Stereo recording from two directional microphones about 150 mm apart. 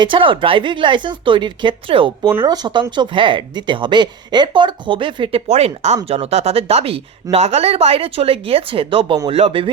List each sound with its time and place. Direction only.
0.0 s speech: 35° right (ahead or behind)